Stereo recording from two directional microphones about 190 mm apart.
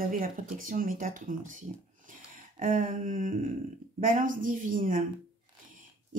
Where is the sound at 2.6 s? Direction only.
45° right (ahead or behind).